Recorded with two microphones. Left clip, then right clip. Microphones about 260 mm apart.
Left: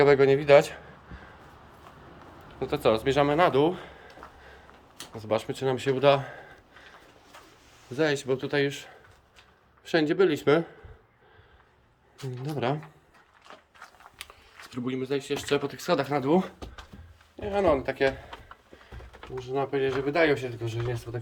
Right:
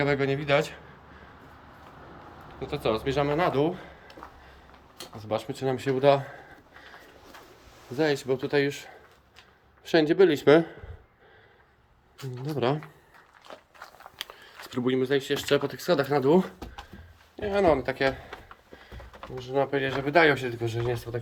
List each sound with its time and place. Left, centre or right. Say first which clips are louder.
0.0 s a man's voice: left 7 dB; centre
2.6 s a man's voice: left 4 dB; centre
5.2 s a man's voice: left 2 dB; centre
7.9 s speech: even; centre
12.5 s speech: right 2 dB; centre
13.5 s a sound: right 3 dB; right
14.2 s speech: right 5 dB; centre
19.4 s speech: right 1 dB; centre